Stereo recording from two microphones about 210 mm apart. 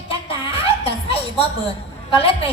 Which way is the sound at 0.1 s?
25° left (ahead or behind).